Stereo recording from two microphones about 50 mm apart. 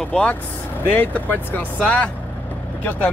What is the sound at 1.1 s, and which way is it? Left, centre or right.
Speech, left.